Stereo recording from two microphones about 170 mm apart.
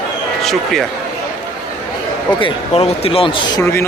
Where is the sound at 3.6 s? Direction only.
15° left (ahead or behind).